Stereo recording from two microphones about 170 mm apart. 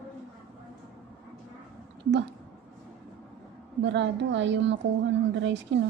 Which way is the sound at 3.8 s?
90° right.